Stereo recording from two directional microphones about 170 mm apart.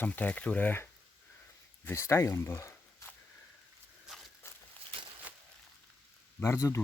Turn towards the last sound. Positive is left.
turn(degrees=15)  # may be behind; listen again after turning